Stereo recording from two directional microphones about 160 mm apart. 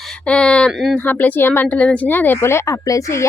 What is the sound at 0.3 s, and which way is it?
Speech, 5° left (ahead or behind).